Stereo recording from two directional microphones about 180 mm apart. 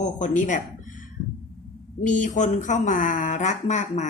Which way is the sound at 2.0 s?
45° left (ahead or behind).